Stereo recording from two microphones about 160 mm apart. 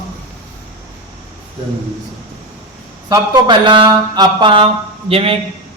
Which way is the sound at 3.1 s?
30° right (ahead or behind).